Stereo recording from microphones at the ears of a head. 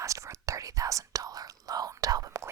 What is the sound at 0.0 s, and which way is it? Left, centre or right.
Whispering, right.